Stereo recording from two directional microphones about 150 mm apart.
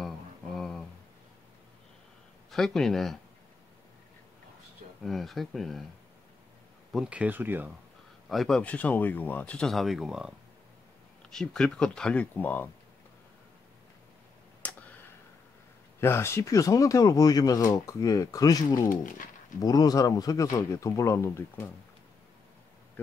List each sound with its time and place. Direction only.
0.6 s a sound: 5° left (ahead or behind)
2.5 s speech: centre (ahead or behind)
5.0 s speech: centre (ahead or behind)
6.9 s speech: 5° right (ahead or behind)
8.3 s speech: centre (ahead or behind)
14.6 s tick: 10° left (ahead or behind)
16.0 s speech: 15° left (ahead or behind)
18.9 s speech: 60° left (ahead or behind)
19.6 s speech: 25° left (ahead or behind)